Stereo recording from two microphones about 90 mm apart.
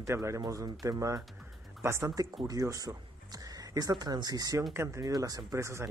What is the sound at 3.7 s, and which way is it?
Speech, 50° right (ahead or behind).